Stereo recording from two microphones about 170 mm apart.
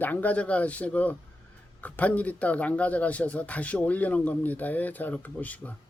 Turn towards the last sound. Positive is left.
turn(degrees=10)  # may be behind; listen again after turning